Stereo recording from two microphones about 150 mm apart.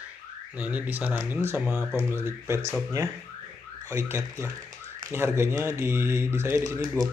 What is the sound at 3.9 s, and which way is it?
Speech, 20° right (ahead or behind).